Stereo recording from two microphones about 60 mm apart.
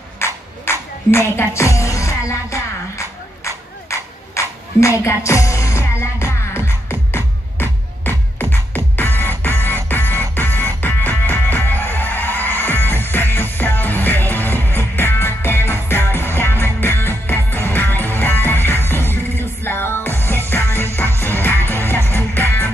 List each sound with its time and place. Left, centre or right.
0.2 s music: left